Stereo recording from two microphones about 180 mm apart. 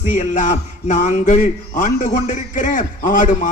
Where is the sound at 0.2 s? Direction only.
45° left (ahead or behind).